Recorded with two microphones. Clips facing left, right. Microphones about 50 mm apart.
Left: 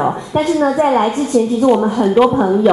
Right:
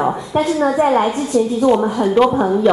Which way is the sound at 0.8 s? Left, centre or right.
Left.